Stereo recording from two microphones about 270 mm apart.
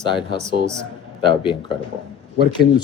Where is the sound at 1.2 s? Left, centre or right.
Centre.